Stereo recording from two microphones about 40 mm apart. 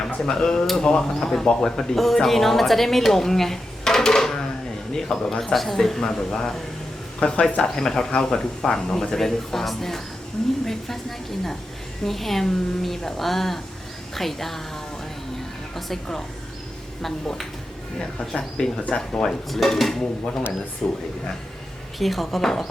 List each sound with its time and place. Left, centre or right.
0.3 s speech: centre
12.0 s a woman's voice: centre
15.7 s speech: centre
18.3 s speech: left
19.5 s speech: centre; by 21.0 s left
21.9 s a woman's voice: centre